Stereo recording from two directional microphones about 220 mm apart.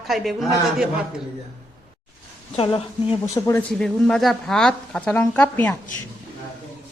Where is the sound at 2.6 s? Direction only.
25° left (ahead or behind).